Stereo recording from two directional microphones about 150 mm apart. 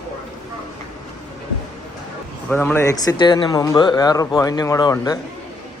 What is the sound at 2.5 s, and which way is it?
Speech, 15° left (ahead or behind).